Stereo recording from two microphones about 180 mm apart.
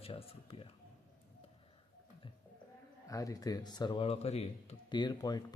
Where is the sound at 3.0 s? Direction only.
20° left (ahead or behind); by 5.0 s 35° left (ahead or behind).